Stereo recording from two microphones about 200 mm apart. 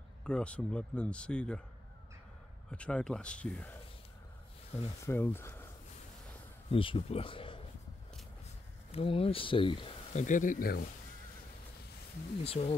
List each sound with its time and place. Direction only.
0.2 s speech: 5° left (ahead or behind)
2.7 s speech: 5° left (ahead or behind)
5.0 s speech: 10° left (ahead or behind)
6.7 s speech: 25° left (ahead or behind)
8.9 s speech: 30° left (ahead or behind)
10.2 s speech: 40° left (ahead or behind)
12.4 s speech: 30° left (ahead or behind)